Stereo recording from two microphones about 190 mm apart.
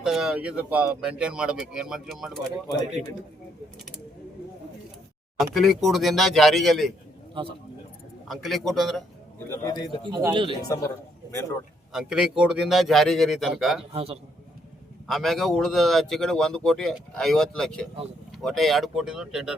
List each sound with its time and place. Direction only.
0.0 s a man's voice: 5° right (ahead or behind)
2.6 s speech: 20° left (ahead or behind)
5.5 s a man's voice: centre (ahead or behind)
8.3 s a man's voice: centre (ahead or behind)
9.5 s speech: 20° left (ahead or behind)
10.0 s speech: 20° right (ahead or behind)
10.7 s speech: 20° left (ahead or behind)
11.9 s a man's voice: 5° right (ahead or behind)
13.9 s a man's voice: 30° right (ahead or behind)
15.0 s a man's voice: centre (ahead or behind)